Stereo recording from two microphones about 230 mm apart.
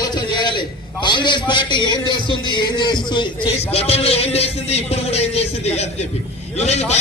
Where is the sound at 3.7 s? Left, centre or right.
Left.